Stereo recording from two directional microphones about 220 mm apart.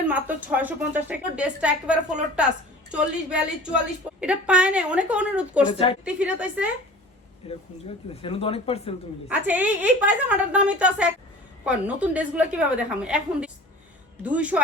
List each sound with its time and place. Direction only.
0.1 s a woman's voice: 5° right (ahead or behind)
5.6 s speech: 25° left (ahead or behind)
6.1 s a woman's voice: 5° right (ahead or behind)
7.4 s speech: 25° left (ahead or behind)
9.5 s a woman's voice: 5° right (ahead or behind)